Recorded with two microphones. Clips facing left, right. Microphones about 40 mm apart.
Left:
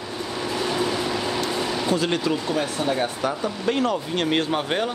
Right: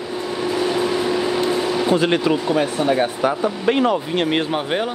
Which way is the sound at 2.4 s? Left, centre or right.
Centre.